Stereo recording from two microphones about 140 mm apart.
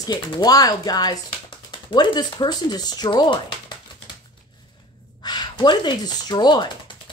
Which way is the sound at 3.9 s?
35° left (ahead or behind).